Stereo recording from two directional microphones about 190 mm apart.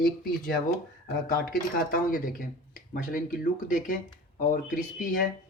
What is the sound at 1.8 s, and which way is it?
Speech, 50° left (ahead or behind).